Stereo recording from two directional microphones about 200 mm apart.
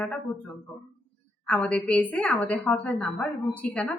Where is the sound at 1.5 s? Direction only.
5° left (ahead or behind).